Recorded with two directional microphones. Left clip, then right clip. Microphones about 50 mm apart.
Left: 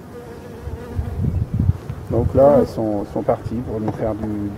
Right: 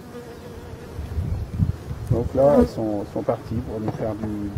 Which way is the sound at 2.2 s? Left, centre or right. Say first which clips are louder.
Left 4 dB; centre.